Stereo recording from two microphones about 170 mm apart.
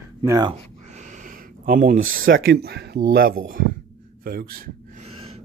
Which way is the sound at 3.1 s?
55° right (ahead or behind).